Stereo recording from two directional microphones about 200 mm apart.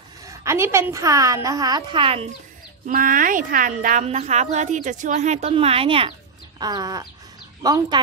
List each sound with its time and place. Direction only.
0.2 s a woman's voice: 15° right (ahead or behind)
2.9 s a woman's voice: 45° right (ahead or behind); by 6.1 s 25° right (ahead or behind)
6.6 s chicken: 20° right (ahead or behind)